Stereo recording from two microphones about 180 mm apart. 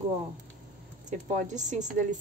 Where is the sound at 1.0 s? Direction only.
40° right (ahead or behind).